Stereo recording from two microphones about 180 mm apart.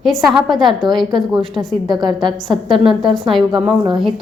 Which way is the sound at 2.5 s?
Centre (ahead or behind).